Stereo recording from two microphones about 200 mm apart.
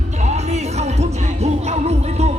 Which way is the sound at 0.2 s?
35° right (ahead or behind).